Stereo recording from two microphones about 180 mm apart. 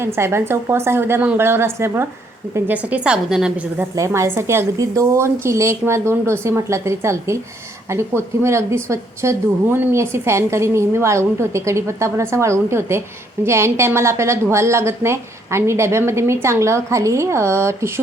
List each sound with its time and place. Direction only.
0.0 s a woman's voice: 15° right (ahead or behind)
3.9 s a woman's voice: 15° right (ahead or behind)